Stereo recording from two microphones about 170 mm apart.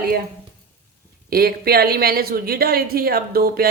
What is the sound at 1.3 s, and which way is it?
Speech, 65° right (ahead or behind).